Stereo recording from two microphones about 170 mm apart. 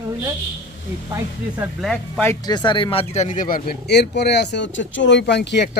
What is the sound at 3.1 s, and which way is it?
Speech, 45° left (ahead or behind).